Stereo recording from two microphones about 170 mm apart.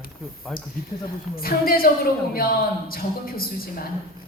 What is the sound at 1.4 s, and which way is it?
A woman's voice, 60° left (ahead or behind).